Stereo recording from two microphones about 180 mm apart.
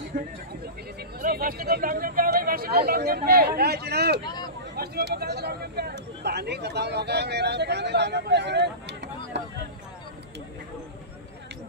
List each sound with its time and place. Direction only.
0.1 s speech: 50° right (ahead or behind); by 9.1 s 70° right (ahead or behind)